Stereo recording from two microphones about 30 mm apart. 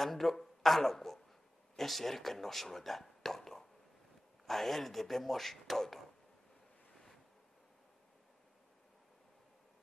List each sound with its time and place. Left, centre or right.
0.0 s speech: centre
6.9 s waves: centre